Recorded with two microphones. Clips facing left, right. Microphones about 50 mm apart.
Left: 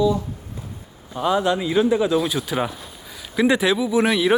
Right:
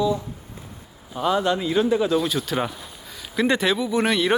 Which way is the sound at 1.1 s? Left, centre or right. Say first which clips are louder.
Left 1 dB; centre.